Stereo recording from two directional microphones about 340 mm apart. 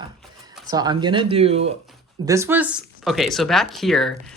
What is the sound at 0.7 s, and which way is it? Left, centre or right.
Speech, centre.